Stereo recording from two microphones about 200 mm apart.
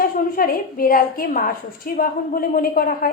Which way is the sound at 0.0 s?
45° left (ahead or behind).